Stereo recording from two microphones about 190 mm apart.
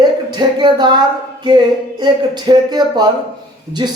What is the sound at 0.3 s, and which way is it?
A man's voice, 25° right (ahead or behind).